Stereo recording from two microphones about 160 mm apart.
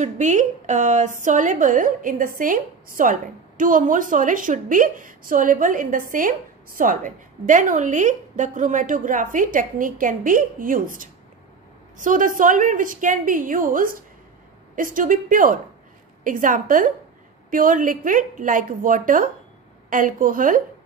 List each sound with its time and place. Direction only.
0.0 s a woman's voice: 50° right (ahead or behind)